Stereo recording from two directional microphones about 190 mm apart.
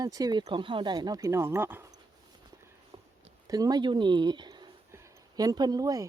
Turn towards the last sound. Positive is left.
turn(degrees=-20)  # may be behind; listen again after turning